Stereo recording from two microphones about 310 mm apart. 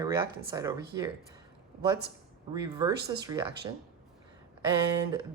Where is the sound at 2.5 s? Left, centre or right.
Centre.